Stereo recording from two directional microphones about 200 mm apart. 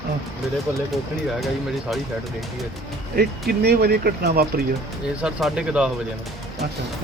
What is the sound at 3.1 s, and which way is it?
Speech, 55° right (ahead or behind).